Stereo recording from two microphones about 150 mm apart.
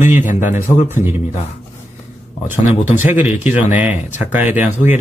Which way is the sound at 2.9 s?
10° right (ahead or behind).